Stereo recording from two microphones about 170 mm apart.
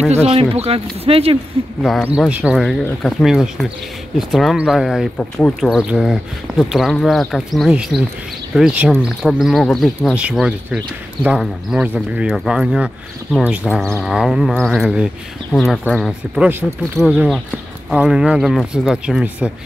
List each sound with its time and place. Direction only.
0.3 s speech: 35° right (ahead or behind)
1.8 s speech: centre (ahead or behind)